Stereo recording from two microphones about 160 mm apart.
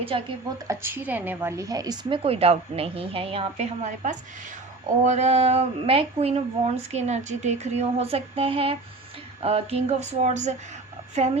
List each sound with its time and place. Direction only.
0.0 s speech: 35° right (ahead or behind)
0.7 s speech: 15° right (ahead or behind); by 10.5 s 45° right (ahead or behind)